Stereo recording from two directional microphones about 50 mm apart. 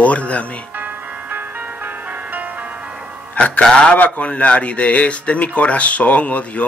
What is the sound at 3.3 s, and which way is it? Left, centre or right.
Speech, left.